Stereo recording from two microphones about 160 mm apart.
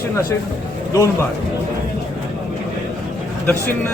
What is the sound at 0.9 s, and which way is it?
Speech, 20° left (ahead or behind).